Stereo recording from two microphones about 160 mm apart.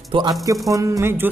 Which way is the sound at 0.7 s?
20° right (ahead or behind).